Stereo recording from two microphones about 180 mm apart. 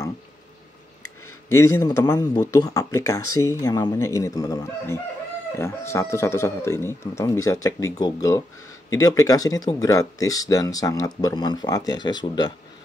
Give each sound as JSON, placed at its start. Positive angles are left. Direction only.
{"t": 1.5, "sound": "speech", "side_deg": 15}